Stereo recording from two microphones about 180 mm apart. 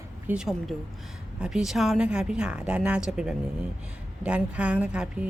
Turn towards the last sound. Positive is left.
turn(degrees=-5)  # may be behind; listen again after turning